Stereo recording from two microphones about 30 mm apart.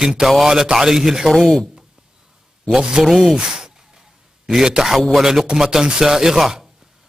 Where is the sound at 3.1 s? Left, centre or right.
Right.